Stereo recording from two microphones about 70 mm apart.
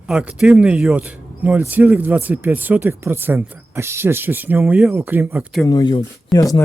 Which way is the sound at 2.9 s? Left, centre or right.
Right.